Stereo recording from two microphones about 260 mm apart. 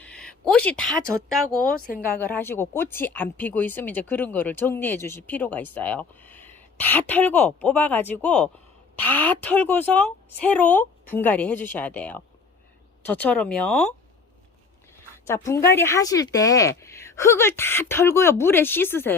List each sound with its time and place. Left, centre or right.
0.0 s a sound: centre
1.3 s speech: centre
1.7 s speech: left
2.1 s speech: centre
15.3 s speech: centre